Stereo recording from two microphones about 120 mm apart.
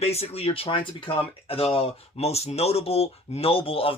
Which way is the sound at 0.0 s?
60° left (ahead or behind).